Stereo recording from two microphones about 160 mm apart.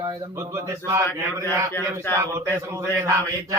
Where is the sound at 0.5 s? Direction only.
20° right (ahead or behind).